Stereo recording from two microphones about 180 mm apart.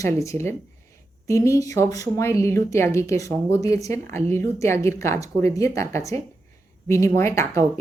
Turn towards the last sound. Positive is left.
turn(degrees=15)  # may be behind; listen again after turning